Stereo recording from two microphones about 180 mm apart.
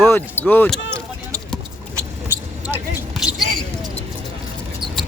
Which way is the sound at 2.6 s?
10° right (ahead or behind).